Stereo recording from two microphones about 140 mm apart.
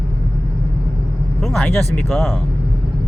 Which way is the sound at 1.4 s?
5° left (ahead or behind).